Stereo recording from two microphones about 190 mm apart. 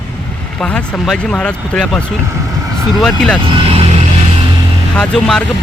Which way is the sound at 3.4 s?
30° right (ahead or behind).